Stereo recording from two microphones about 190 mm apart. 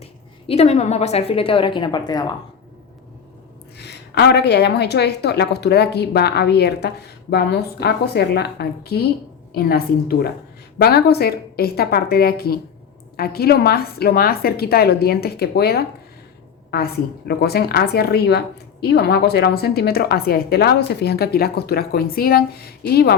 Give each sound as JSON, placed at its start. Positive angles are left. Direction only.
{"t": 0.0, "sound": "a woman's voice", "side_deg": 35}
{"t": 3.8, "sound": "a woman's voice", "side_deg": 60}